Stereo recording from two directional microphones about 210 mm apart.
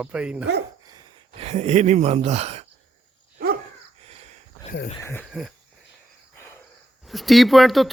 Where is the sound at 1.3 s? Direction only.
30° right (ahead or behind).